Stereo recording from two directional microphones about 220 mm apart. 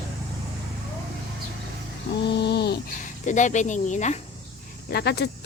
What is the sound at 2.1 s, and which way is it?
Speech, 50° left (ahead or behind).